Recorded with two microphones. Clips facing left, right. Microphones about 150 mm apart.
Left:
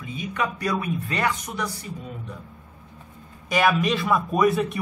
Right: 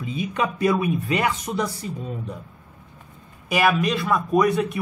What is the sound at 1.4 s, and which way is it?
Speech, 30° right (ahead or behind).